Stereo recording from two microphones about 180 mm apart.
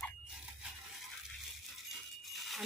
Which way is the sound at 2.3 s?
Centre (ahead or behind).